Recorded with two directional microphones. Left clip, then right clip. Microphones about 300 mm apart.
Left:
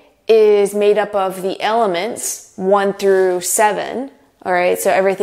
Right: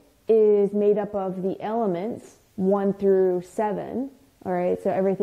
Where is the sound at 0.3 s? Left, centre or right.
Centre.